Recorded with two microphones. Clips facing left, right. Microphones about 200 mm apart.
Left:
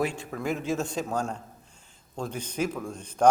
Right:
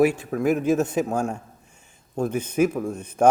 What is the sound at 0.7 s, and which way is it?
Speech, 20° right (ahead or behind).